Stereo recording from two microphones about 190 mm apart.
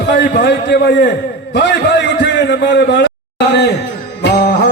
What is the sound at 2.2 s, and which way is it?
Speech, 65° left (ahead or behind).